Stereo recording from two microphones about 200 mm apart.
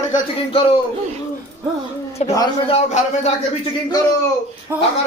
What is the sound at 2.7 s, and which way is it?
Speech, 30° left (ahead or behind).